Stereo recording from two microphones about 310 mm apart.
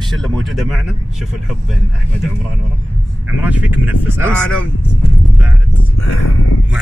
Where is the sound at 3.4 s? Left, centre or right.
Centre.